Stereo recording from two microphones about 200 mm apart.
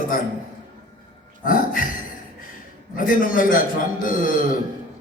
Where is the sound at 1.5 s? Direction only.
45° left (ahead or behind).